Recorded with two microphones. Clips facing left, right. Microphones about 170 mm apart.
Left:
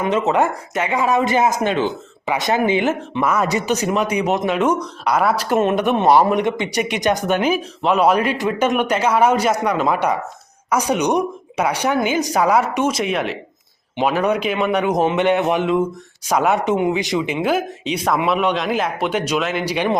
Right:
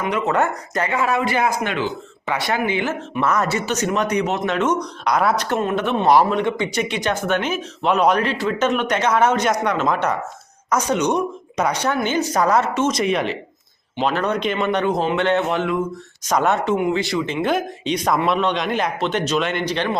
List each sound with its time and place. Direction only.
0.1 s speech: 15° left (ahead or behind)
5.5 s speech: 20° left (ahead or behind)
13.0 s speech: centre (ahead or behind); by 15.8 s 20° left (ahead or behind)
16.3 s speech: 10° left (ahead or behind)